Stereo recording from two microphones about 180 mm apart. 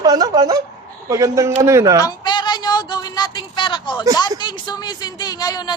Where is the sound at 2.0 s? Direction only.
25° left (ahead or behind).